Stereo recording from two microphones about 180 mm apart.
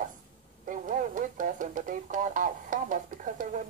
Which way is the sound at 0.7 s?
45° right (ahead or behind).